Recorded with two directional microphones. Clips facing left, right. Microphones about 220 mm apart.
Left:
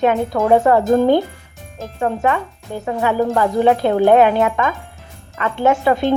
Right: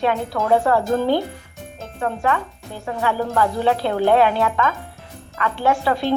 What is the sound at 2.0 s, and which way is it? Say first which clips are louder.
Speech: left 3 dB; 20° left (ahead or behind).